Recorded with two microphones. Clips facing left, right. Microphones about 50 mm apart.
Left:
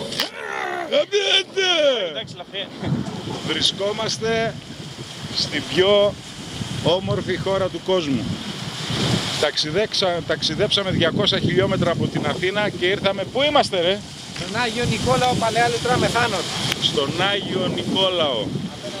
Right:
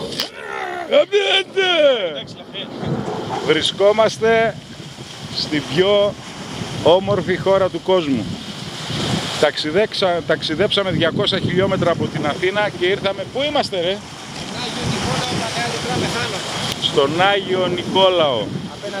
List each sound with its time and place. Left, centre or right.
0.5 s a sound: centre
0.8 s speech: centre
3.4 s speech: right
5.4 s speech: centre
6.9 s speech: centre
9.4 s speech: centre
13.6 s speech: centre
14.8 s speech: right
15.9 s speech: centre
16.9 s speech: right
18.2 s speech: centre